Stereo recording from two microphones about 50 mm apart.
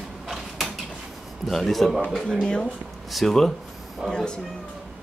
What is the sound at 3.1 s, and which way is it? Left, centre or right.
Speech, centre.